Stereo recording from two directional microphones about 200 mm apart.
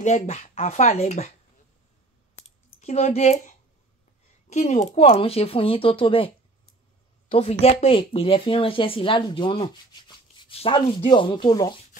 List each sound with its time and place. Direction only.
0.0 s speech: 35° left (ahead or behind)
2.3 s clicking: 35° left (ahead or behind)
4.5 s a woman's voice: 35° left (ahead or behind)